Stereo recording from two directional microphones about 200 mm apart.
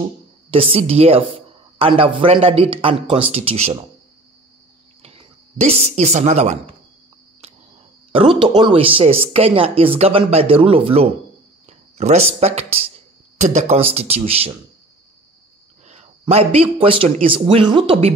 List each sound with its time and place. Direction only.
0.5 s speech: 30° right (ahead or behind)
5.0 s speech: 30° right (ahead or behind)
8.1 s speech: 25° right (ahead or behind)
15.9 s a man's voice: 30° right (ahead or behind)